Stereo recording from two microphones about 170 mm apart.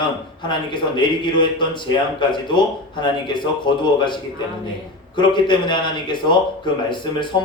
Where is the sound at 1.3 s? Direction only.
25° left (ahead or behind).